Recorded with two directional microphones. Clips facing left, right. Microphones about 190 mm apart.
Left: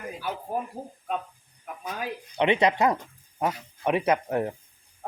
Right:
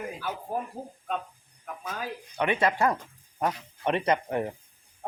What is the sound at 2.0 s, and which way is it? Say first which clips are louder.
Speech: left 4 dB; 20° left (ahead or behind).